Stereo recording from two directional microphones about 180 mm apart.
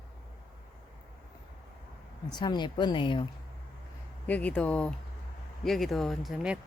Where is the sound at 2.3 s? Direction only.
25° left (ahead or behind).